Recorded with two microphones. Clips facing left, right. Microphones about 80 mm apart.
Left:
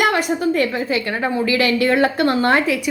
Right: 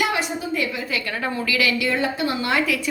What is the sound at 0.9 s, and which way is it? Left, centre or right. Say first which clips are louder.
A woman's voice: left 6 dB; left.